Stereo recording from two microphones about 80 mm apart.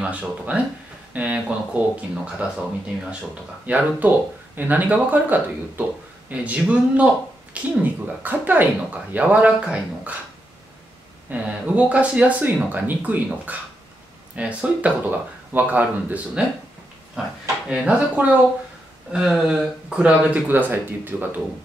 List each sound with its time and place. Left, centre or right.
0.0 s speech: centre
11.2 s speech: centre
17.6 s speech: centre
19.1 s speech: centre
20.4 s speech: right